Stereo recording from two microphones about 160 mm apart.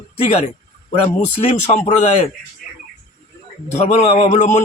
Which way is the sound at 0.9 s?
40° left (ahead or behind).